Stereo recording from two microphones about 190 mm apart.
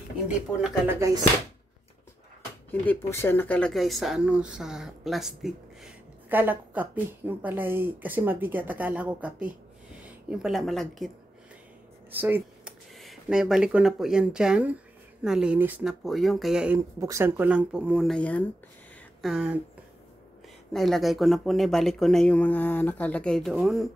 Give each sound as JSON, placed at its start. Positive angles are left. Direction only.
{"t": 0.6, "sound": "speech", "side_deg": -5}
{"t": 0.9, "sound": "speech", "side_deg": -15}
{"t": 2.7, "sound": "speech", "side_deg": 10}
{"t": 12.1, "sound": "a sound", "side_deg": -10}
{"t": 12.9, "sound": "speech", "side_deg": 0}
{"t": 19.2, "sound": "speech", "side_deg": -5}
{"t": 20.7, "sound": "speech", "side_deg": 0}